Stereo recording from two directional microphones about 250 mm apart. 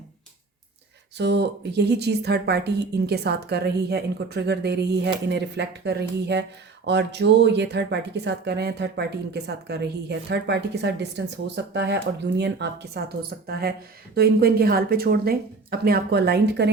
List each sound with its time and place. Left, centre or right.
1.2 s speech: right